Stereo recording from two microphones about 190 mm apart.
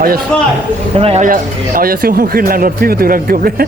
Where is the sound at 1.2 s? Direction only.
50° right (ahead or behind).